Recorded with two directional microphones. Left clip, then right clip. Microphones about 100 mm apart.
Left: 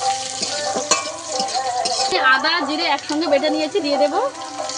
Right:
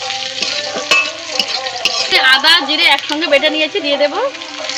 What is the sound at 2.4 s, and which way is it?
A woman's voice, 25° left (ahead or behind).